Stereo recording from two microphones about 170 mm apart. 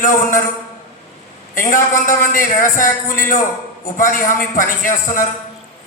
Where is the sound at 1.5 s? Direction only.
50° left (ahead or behind).